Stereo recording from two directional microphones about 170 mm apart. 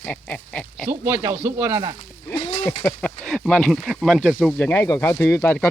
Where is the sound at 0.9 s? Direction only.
15° right (ahead or behind).